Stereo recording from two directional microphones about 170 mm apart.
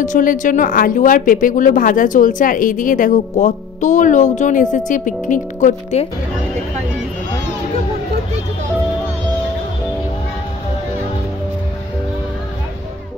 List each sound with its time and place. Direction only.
0.0 s speech: 50° left (ahead or behind)